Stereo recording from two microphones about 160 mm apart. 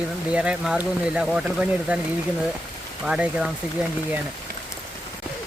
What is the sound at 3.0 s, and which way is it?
Speech, 5° right (ahead or behind).